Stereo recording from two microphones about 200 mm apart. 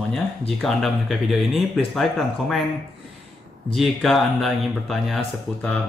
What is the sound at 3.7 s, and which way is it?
Speech, centre (ahead or behind).